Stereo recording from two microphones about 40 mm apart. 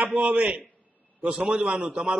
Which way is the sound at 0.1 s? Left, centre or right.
Right.